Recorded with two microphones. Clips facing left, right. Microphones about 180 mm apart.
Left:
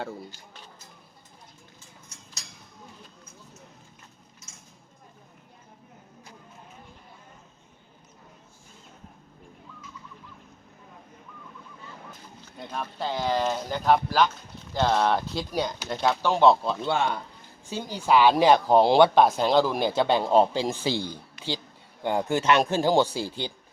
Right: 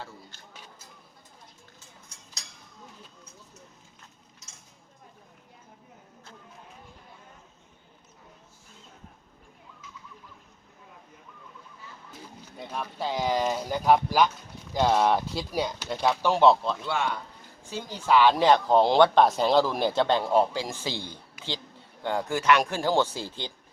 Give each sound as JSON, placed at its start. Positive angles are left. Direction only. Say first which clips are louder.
{"t": 12.7, "sound": "speech", "louder": "even", "side_deg": -5}
{"t": 16.7, "sound": "speech", "louder": "left 3 dB", "side_deg": 30}
{"t": 17.7, "sound": "speech", "louder": "left 1 dB", "side_deg": 15}
{"t": 20.2, "sound": "speech", "louder": "left 3 dB", "side_deg": 25}
{"t": 22.0, "sound": "speech", "louder": "left 1 dB", "side_deg": 20}